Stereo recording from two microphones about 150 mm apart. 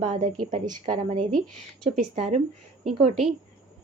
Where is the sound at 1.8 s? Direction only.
45° right (ahead or behind).